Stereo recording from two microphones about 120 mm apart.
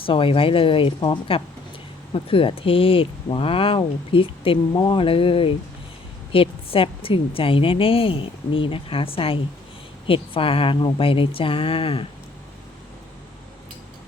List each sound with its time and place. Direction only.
0.0 s a woman's voice: 45° left (ahead or behind)
4.7 s speech: 30° left (ahead or behind)
4.9 s a woman's voice: 50° left (ahead or behind)